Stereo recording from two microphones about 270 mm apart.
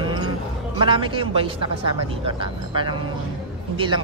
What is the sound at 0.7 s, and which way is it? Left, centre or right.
Speech, centre.